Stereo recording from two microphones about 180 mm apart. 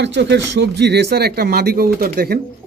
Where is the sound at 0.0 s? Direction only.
80° right; by 2.4 s 60° right (ahead or behind).